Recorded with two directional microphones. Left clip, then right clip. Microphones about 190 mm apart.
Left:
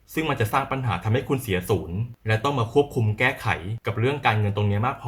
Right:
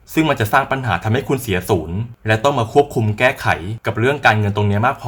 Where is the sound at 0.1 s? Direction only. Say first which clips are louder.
Right 9 dB; 40° right (ahead or behind).